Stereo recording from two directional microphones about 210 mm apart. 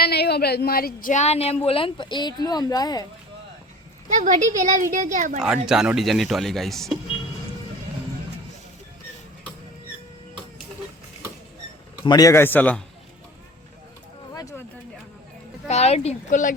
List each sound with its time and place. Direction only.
0.0 s speech: 50° left (ahead or behind); by 3.1 s 20° left (ahead or behind)
4.1 s speech: 35° right (ahead or behind)
5.6 s speech: 5° right (ahead or behind)
12.0 s a man's voice: 15° left (ahead or behind)
14.3 s a sound: 15° left (ahead or behind)
15.6 s speech: 30° left (ahead or behind)